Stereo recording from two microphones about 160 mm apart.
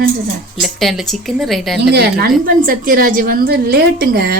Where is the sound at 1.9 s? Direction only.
90° right.